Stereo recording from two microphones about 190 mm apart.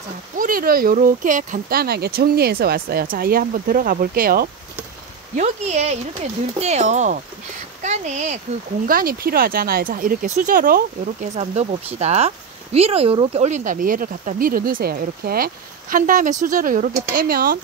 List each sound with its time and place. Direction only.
0.4 s speech: 50° right (ahead or behind)
5.3 s speech: 35° right (ahead or behind)
8.8 s speech: 50° right (ahead or behind)